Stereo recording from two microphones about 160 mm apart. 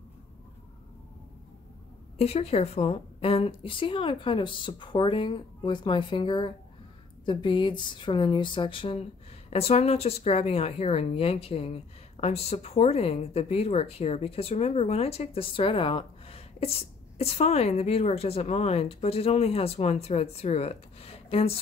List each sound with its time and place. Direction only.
2.1 s speech: 40° left (ahead or behind)